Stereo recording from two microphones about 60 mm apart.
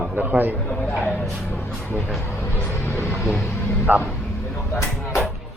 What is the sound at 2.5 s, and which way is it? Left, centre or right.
Vehicle, left.